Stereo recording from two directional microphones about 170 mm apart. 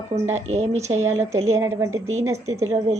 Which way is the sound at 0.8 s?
15° right (ahead or behind).